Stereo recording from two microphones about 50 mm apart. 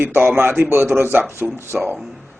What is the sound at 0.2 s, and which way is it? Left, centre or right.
Speech, right.